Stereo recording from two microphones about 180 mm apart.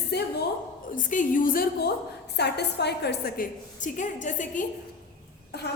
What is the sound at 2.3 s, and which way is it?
A woman's voice, 70° left (ahead or behind).